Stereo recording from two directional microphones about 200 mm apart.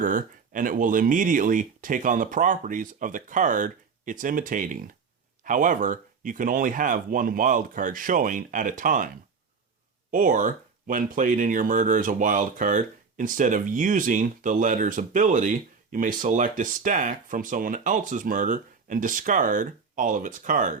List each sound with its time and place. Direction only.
0.0 s speech: 40° right (ahead or behind)
10.1 s speech: 40° right (ahead or behind)